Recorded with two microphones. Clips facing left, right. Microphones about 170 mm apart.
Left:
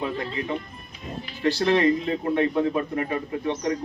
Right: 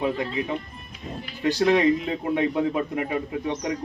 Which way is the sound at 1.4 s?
15° right (ahead or behind).